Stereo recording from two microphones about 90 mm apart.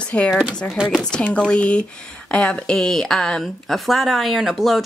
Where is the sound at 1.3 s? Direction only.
10° left (ahead or behind).